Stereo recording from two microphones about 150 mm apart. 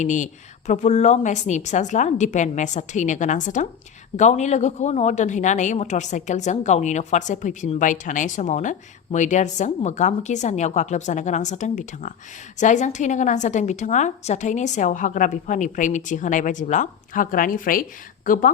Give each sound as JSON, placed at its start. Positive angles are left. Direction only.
{"t": 0.0, "sound": "a woman's voice", "side_deg": 55}